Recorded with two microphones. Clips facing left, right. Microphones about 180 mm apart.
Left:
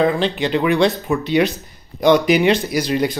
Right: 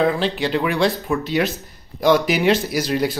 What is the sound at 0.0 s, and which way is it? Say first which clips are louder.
Speech: left 2 dB; centre (ahead or behind).